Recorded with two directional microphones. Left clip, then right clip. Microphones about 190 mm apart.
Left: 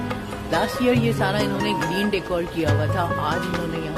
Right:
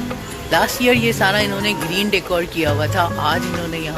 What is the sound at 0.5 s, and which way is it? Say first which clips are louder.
Speech: right 6 dB; centre (ahead or behind).